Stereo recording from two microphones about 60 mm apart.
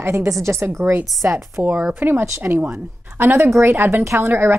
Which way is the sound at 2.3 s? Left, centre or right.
Right.